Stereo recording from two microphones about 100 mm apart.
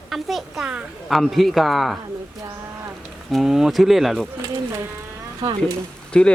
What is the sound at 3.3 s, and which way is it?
Speech, 5° right (ahead or behind).